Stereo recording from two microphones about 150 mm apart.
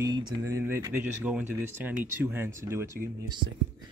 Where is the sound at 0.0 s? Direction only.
25° right (ahead or behind).